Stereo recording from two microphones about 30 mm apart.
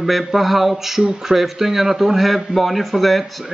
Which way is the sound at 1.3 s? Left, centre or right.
Centre.